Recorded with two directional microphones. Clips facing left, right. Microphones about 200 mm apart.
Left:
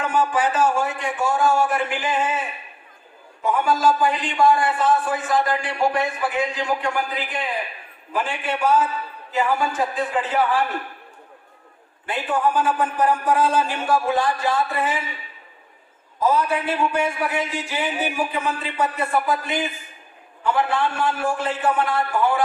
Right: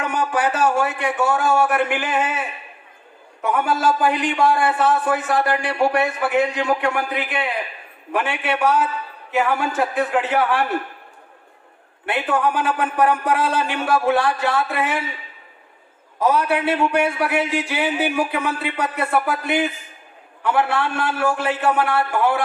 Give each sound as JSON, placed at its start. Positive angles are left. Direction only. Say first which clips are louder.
{"t": 0.0, "sound": "a man's voice", "louder": "even", "side_deg": -65}
{"t": 3.4, "sound": "a man's voice", "louder": "even", "side_deg": -65}
{"t": 12.0, "sound": "a man's voice", "louder": "right 2 dB", "side_deg": -70}
{"t": 16.1, "sound": "a man's voice", "louder": "right 2 dB", "side_deg": -70}